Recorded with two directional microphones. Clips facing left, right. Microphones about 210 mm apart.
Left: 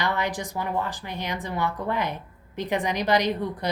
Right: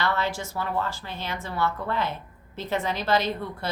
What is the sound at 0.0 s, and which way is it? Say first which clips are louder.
Speech: even; 15° left (ahead or behind).